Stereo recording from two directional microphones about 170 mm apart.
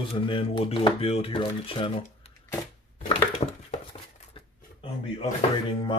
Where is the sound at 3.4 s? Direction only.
35° left (ahead or behind).